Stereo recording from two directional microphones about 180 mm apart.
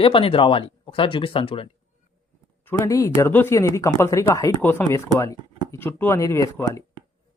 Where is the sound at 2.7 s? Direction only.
15° left (ahead or behind).